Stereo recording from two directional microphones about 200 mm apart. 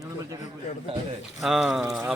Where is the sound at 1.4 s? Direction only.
Centre (ahead or behind).